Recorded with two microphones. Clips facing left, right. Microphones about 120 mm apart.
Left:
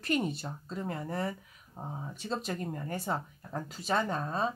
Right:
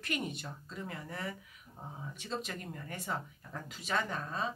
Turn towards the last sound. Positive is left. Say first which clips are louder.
# left 5 dB
turn(degrees=35)  # may be behind; listen again after turning